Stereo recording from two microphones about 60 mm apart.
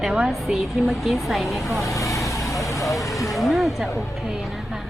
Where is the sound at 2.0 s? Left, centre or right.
Left.